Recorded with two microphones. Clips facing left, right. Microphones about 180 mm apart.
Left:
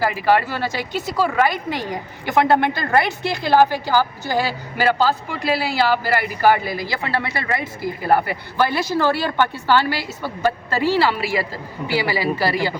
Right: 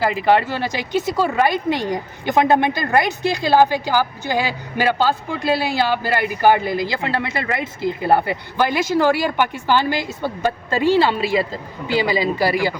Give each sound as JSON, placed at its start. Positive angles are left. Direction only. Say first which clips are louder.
{"t": 0.0, "sound": "a woman's voice", "louder": "right 1 dB", "side_deg": -20}